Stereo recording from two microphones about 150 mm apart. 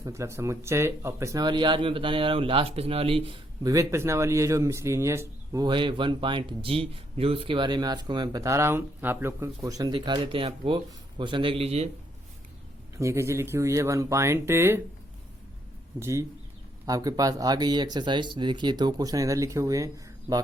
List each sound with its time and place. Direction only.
0.0 s speech: 20° right (ahead or behind)
5.6 s speech: 35° right (ahead or behind)
13.0 s speech: 20° right (ahead or behind)
16.0 s speech: 20° right (ahead or behind)